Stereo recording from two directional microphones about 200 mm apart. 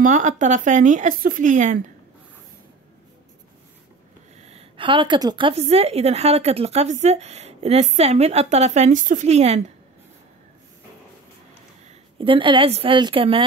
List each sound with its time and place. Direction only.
0.0 s a woman's voice: 40° right (ahead or behind)
4.4 s a woman's voice: 30° right (ahead or behind)
11.9 s speech: 25° right (ahead or behind)